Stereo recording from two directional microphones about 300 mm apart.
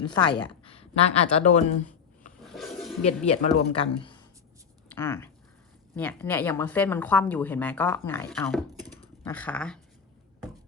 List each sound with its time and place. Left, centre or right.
0.0 s speech: centre
2.4 s a sound: centre
3.2 s speech: left; by 9.7 s centre